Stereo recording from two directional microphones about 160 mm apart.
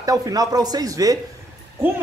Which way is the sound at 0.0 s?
20° right (ahead or behind).